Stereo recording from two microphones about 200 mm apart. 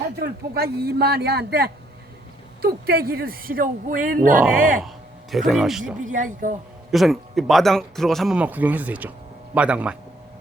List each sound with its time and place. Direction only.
0.2 s speech: 50° right (ahead or behind)
5.3 s speech: centre (ahead or behind)
6.0 s speech: 40° right (ahead or behind)
6.9 s speech: centre (ahead or behind)